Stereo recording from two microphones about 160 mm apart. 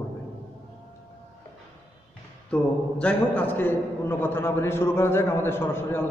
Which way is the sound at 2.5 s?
5° left (ahead or behind).